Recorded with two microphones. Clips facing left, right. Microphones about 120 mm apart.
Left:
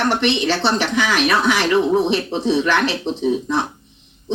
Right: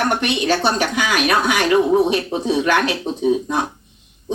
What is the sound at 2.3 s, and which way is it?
Speech, 45° right (ahead or behind).